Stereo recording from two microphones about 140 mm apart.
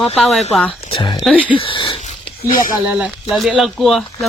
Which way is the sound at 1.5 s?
40° left (ahead or behind).